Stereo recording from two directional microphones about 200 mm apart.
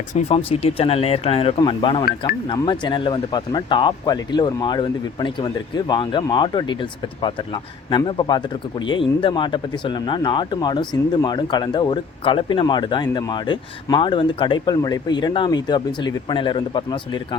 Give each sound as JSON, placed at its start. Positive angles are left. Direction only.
{"t": 0.1, "sound": "speech", "side_deg": 35}